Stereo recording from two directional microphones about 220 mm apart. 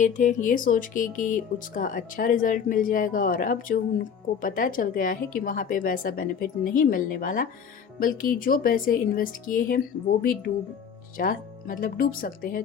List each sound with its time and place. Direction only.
0.0 s speech: 35° left (ahead or behind)